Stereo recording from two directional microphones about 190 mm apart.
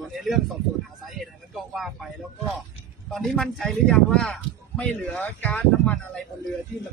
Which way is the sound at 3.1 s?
Centre (ahead or behind).